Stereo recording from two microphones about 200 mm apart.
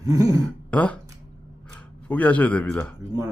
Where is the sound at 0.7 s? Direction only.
5° left (ahead or behind).